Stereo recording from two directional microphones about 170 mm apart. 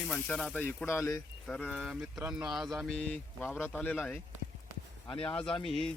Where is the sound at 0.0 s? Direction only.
5° left (ahead or behind).